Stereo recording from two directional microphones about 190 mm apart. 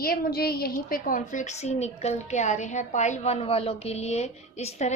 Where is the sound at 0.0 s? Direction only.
50° left (ahead or behind).